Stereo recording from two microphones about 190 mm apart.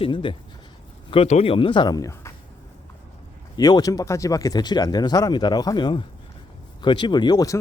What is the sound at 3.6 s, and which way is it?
Speech, 20° left (ahead or behind).